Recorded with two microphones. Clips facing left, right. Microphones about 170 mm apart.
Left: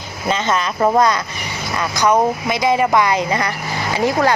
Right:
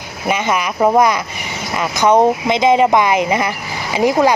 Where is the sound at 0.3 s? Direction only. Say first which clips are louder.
Right 1 dB; 15° right (ahead or behind).